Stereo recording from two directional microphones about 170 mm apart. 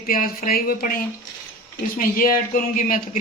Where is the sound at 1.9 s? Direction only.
55° left (ahead or behind).